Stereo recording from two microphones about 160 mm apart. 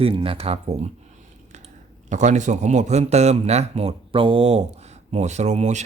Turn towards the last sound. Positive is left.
turn(degrees=-45)  # may be behind; listen again after turning